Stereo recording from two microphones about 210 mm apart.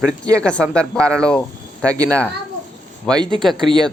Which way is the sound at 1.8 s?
15° right (ahead or behind).